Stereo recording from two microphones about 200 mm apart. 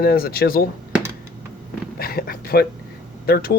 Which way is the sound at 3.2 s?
50° left (ahead or behind).